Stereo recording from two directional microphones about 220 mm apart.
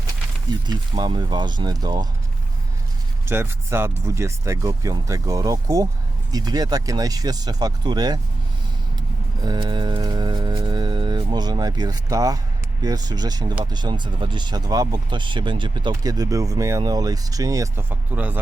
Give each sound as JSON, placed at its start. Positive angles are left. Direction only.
{"t": 0.7, "sound": "speech", "side_deg": -20}
{"t": 3.2, "sound": "speech", "side_deg": -10}
{"t": 9.4, "sound": "a sound", "side_deg": -20}
{"t": 12.8, "sound": "speech", "side_deg": -15}